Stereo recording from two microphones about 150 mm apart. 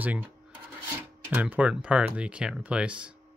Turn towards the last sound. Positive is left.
turn(degrees=-5)  # may be behind; listen again after turning